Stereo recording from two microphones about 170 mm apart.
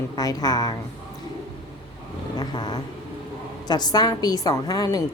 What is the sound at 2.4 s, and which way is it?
Vehicle, 25° left (ahead or behind).